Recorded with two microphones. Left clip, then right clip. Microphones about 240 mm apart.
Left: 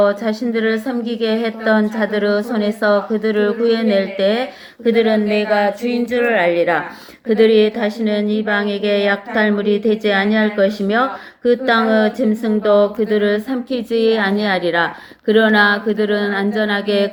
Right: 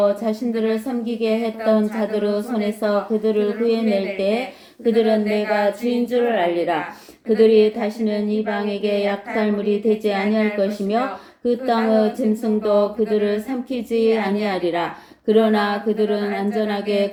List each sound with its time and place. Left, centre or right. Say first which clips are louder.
0.0 s a woman's voice: left 3 dB; left